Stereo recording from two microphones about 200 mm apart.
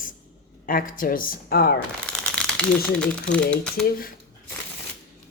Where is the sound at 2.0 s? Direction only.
5° left (ahead or behind).